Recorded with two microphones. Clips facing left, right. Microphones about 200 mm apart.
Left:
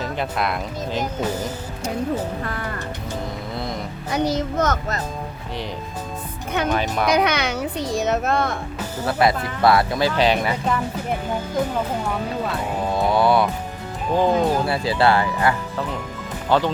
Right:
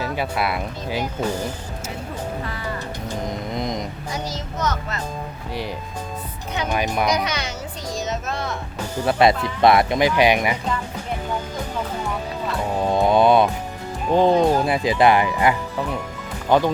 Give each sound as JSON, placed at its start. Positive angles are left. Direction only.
{"t": 0.0, "sound": "speech", "side_deg": -5}
{"t": 2.4, "sound": "a child's voice", "side_deg": 50}
{"t": 3.2, "sound": "music", "side_deg": -20}
{"t": 4.1, "sound": "a child's voice", "side_deg": 60}
{"t": 6.7, "sound": "speech", "side_deg": -10}
{"t": 7.1, "sound": "a child's voice", "side_deg": 60}
{"t": 9.0, "sound": "speech", "side_deg": -20}
{"t": 12.9, "sound": "music", "side_deg": -20}
{"t": 14.1, "sound": "speech", "side_deg": -20}